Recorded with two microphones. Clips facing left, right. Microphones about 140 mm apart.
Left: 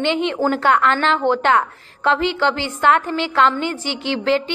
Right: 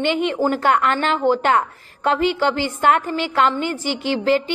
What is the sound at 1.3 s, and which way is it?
A woman's voice, 45° right (ahead or behind).